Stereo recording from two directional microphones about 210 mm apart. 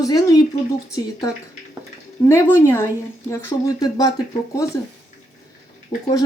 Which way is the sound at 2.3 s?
10° left (ahead or behind).